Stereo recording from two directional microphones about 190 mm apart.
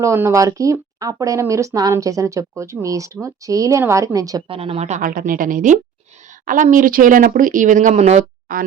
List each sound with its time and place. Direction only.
0.0 s speech: 15° right (ahead or behind); by 8.6 s 40° right (ahead or behind)